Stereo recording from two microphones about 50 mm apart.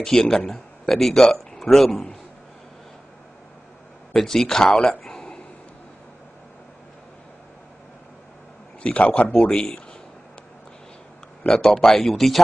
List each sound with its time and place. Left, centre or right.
0.0 s speech: centre
4.1 s speech: centre
4.6 s speech: left
8.8 s speech: left
9.5 s speech: centre
11.4 s speech: centre